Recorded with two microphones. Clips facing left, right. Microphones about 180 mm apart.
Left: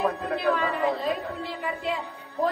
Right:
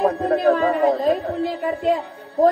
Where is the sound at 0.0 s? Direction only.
40° right (ahead or behind).